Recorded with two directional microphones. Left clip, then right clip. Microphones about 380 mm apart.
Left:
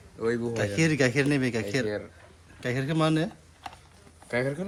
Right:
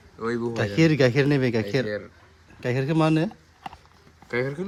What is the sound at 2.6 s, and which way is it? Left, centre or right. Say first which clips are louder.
Speech: right 4 dB; centre.